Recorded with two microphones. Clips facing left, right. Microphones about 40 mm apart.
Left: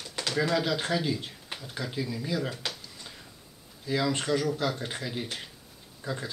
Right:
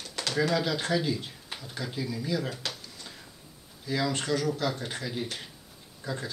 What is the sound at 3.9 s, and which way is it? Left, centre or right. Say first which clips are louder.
Speech: left 1 dB; centre.